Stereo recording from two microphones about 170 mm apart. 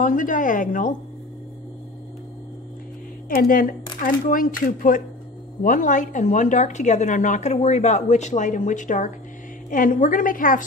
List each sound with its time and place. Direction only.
0.0 s a woman's voice: 50° left (ahead or behind)
3.3 s a woman's voice: 55° left (ahead or behind)